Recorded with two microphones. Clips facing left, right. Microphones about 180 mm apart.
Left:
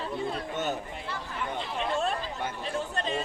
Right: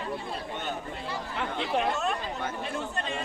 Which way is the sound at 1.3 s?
70° right (ahead or behind).